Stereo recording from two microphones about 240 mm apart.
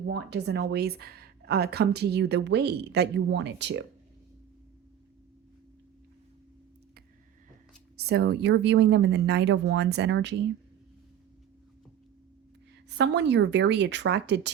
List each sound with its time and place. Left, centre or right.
0.0 s speech: right
7.9 s speech: right
13.0 s speech: right